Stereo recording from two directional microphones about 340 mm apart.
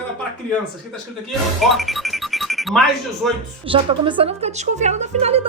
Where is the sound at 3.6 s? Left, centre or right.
Centre.